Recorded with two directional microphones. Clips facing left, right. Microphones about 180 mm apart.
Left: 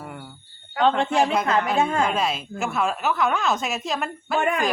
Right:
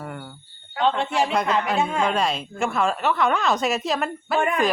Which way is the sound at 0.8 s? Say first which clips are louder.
Left 2 dB; 45° left (ahead or behind).